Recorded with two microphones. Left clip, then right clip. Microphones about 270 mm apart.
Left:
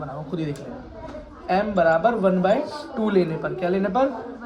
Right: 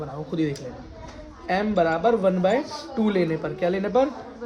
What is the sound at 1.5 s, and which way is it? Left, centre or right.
Speech, right.